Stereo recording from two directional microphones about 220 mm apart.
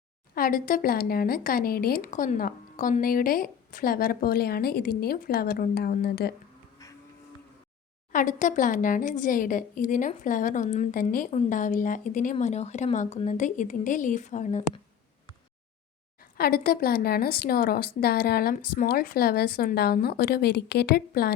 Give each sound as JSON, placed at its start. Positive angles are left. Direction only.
{"t": 0.3, "sound": "speech", "side_deg": 40}
{"t": 8.1, "sound": "speech", "side_deg": 35}
{"t": 16.4, "sound": "a woman's voice", "side_deg": 40}